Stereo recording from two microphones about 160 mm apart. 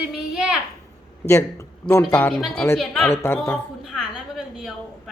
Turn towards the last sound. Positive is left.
turn(degrees=0)  # may be behind; listen again after turning